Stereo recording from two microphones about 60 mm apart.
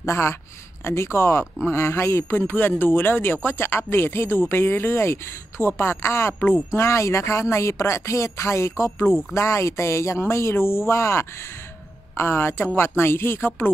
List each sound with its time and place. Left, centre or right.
0.0 s speech: left